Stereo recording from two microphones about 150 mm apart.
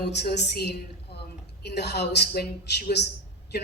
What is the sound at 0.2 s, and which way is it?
A woman's voice, 90° left.